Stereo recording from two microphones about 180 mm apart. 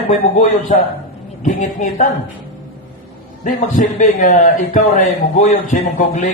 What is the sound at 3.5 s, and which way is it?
A man's voice, 45° left (ahead or behind).